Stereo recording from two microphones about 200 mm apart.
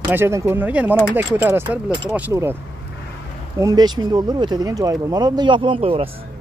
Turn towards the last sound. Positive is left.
turn(degrees=-30)  # may be behind; listen again after turning